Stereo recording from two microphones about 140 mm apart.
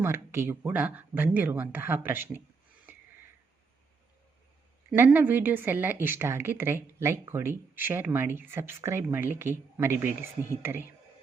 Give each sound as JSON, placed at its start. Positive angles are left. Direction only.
{"t": 0.0, "sound": "a woman's voice", "side_deg": -15}
{"t": 4.9, "sound": "a woman's voice", "side_deg": -15}